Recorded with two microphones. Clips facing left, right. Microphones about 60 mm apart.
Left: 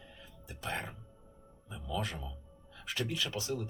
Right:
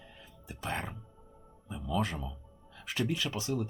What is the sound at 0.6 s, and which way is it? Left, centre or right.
Speech, right.